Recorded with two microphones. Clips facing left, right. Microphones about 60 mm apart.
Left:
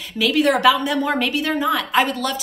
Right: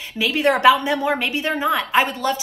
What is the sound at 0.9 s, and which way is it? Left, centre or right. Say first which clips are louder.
Speech: left 1 dB; centre.